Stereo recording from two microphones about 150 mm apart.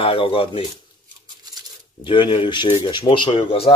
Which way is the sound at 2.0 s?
35° left (ahead or behind).